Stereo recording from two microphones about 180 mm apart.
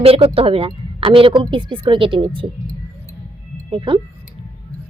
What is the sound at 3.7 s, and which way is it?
Speech, 30° right (ahead or behind).